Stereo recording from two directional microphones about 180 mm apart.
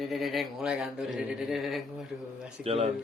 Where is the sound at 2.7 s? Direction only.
35° right (ahead or behind).